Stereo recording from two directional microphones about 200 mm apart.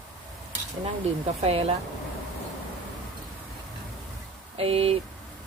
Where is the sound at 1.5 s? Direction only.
30° right (ahead or behind).